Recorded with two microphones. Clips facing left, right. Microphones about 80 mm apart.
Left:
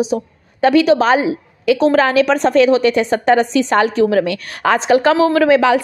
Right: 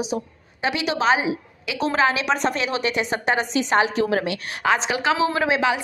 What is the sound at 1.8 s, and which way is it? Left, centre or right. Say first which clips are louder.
A woman's voice: left 6 dB; left.